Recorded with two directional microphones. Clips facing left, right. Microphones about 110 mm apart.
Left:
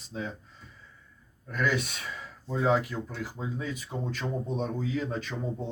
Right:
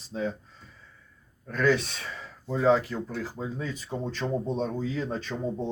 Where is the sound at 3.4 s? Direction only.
35° right (ahead or behind).